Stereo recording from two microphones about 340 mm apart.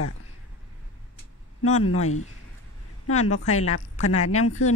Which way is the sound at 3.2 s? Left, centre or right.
Left.